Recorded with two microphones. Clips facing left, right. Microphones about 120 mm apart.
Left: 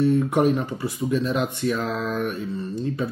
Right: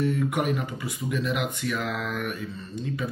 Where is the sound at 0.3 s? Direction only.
30° left (ahead or behind).